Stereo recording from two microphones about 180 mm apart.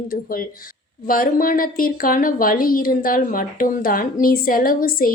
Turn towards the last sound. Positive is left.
turn(degrees=55)  # may be behind; listen again after turning